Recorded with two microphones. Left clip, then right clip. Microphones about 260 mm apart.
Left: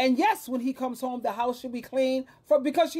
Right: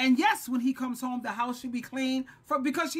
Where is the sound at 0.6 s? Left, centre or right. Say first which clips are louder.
Left 4 dB; centre.